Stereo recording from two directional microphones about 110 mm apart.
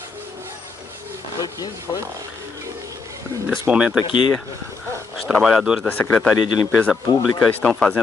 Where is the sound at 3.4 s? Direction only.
10° right (ahead or behind).